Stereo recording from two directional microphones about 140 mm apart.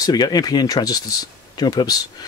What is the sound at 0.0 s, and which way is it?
Speech, 30° left (ahead or behind).